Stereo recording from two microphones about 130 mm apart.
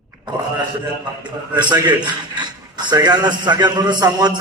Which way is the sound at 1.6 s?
35° right (ahead or behind).